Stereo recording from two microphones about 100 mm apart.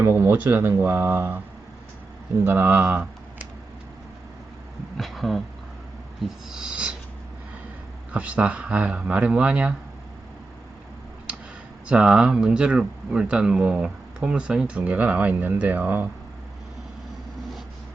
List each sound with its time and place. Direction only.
0.0 s speech: 25° right (ahead or behind)
2.4 s speech: 20° right (ahead or behind)
2.9 s computer keyboard: 15° right (ahead or behind)
4.9 s a sound: centre (ahead or behind)
6.5 s speech: 10° right (ahead or behind)
8.1 s speech: 10° right (ahead or behind)
11.9 s speech: 5° right (ahead or behind)